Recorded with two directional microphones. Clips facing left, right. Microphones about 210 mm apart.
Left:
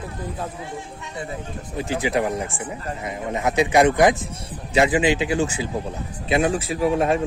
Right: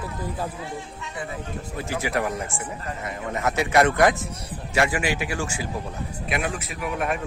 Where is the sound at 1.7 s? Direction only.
15° left (ahead or behind).